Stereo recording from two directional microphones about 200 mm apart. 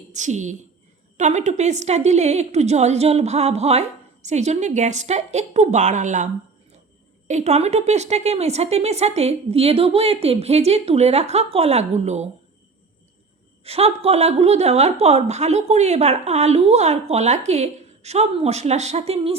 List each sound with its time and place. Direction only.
0.1 s a woman's voice: 35° right (ahead or behind)
13.7 s a woman's voice: 30° right (ahead or behind)